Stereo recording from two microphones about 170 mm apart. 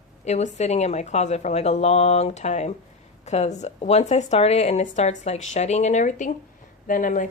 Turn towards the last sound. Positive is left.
turn(degrees=50)  # may be behind; listen again after turning